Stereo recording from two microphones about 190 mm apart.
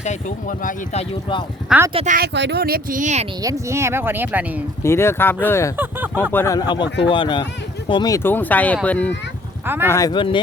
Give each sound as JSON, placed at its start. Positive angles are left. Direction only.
{"t": 0.0, "sound": "speech", "side_deg": 40}
{"t": 1.9, "sound": "speech", "side_deg": -30}
{"t": 2.1, "sound": "speech", "side_deg": -60}
{"t": 3.4, "sound": "speech", "side_deg": -15}
{"t": 4.8, "sound": "speech", "side_deg": 15}
{"t": 5.7, "sound": "a sound", "side_deg": -10}
{"t": 6.3, "sound": "speech", "side_deg": 15}
{"t": 9.6, "sound": "speech", "side_deg": -10}
{"t": 9.9, "sound": "speech", "side_deg": 20}